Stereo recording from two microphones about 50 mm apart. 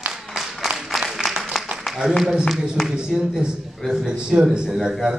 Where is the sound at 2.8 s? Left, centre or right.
Centre.